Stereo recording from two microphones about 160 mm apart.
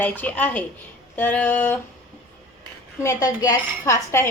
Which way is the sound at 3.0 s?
20° left (ahead or behind).